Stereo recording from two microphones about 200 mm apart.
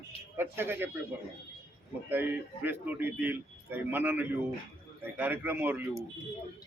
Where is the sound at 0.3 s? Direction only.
10° right (ahead or behind).